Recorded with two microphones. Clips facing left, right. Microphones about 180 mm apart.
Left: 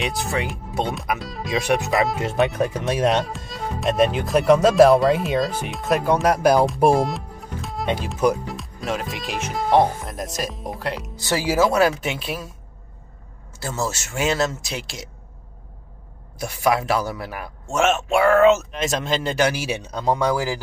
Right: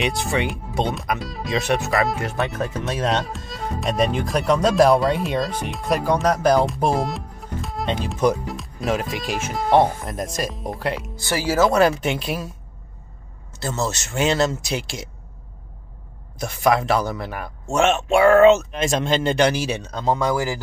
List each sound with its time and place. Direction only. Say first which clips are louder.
0.0 s speech: right 2 dB; centre (ahead or behind)
1.6 s speech: left 1 dB; 10° left (ahead or behind)
1.9 s speech: even; centre (ahead or behind)
2.2 s speech: left 4 dB; 20° left (ahead or behind)
3.3 s speech: even; centre (ahead or behind)
11.3 s speech: right 1 dB; 15° left (ahead or behind)
13.6 s speech: right 1 dB; 10° left (ahead or behind)
16.3 s speech: right 2 dB; 5° left (ahead or behind)